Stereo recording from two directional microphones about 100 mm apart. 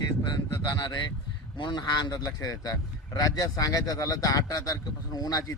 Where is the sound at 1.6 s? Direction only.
50° left (ahead or behind).